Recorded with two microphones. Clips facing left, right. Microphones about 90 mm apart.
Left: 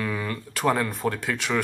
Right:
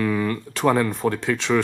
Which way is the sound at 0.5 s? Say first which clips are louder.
Right 4 dB; 30° right (ahead or behind).